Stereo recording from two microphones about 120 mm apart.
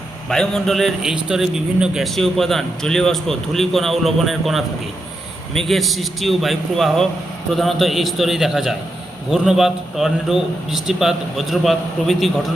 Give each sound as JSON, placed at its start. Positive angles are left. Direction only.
{"t": 0.3, "sound": "a man's voice", "side_deg": 5}